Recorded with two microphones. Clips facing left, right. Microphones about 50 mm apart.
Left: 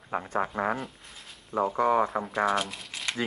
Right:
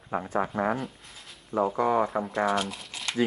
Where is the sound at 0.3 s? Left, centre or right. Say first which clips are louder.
Right 1 dB; left.